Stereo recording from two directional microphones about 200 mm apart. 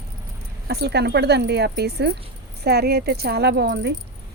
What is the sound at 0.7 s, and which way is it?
Speech, 55° right (ahead or behind).